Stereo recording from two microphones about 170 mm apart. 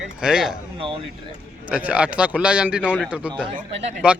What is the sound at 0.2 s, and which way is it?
Speech, 5° right (ahead or behind).